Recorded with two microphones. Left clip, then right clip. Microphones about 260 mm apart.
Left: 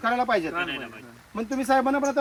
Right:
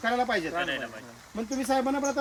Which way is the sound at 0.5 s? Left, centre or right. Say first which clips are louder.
Left 1 dB; centre.